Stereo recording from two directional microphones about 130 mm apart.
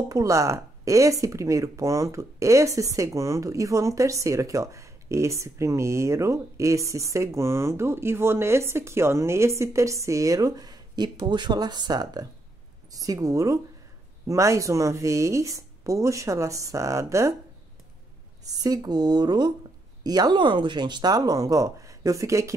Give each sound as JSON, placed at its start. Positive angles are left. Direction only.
{"t": 0.1, "sound": "speech", "side_deg": -25}
{"t": 18.4, "sound": "speech", "side_deg": -30}